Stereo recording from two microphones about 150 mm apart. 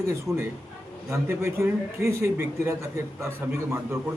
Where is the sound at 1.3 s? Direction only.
15° right (ahead or behind).